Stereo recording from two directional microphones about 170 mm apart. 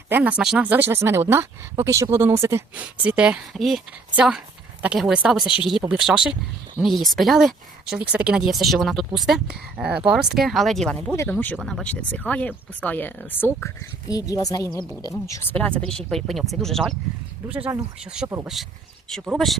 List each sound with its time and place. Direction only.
0.1 s speech: 10° right (ahead or behind); by 15.5 s 20° left (ahead or behind)
15.8 s speech: 5° left (ahead or behind)
17.4 s speech: 10° right (ahead or behind)